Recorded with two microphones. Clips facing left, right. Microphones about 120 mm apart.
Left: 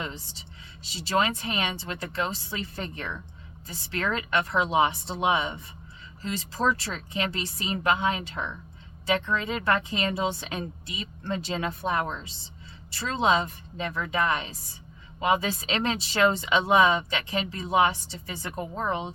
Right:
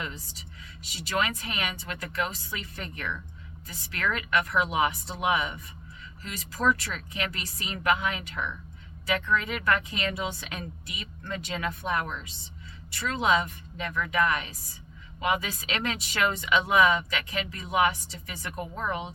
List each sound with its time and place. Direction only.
0.0 s speech: 30° left (ahead or behind)